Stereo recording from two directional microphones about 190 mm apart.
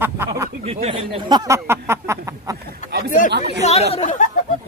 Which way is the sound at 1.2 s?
20° right (ahead or behind).